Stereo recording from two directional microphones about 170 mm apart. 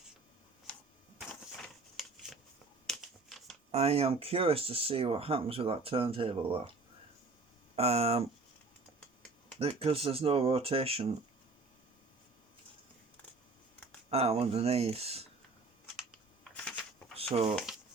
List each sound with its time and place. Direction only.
2.8 s shuffling cards: centre (ahead or behind)
3.7 s speech: 35° right (ahead or behind)
7.8 s speech: 35° right (ahead or behind)
9.6 s speech: 35° right (ahead or behind)
14.1 s speech: 35° right (ahead or behind)
16.0 s computer keyboard: 5° left (ahead or behind)
17.5 s speech: centre (ahead or behind)